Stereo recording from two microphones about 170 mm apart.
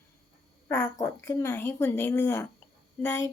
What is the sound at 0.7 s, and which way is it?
A woman's voice, 15° left (ahead or behind).